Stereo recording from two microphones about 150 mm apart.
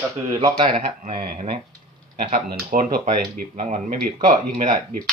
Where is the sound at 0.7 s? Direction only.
65° right (ahead or behind).